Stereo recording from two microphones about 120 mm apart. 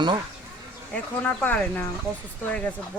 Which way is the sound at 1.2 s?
10° left (ahead or behind).